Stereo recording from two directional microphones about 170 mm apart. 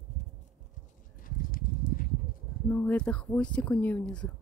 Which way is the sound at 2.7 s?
10° left (ahead or behind).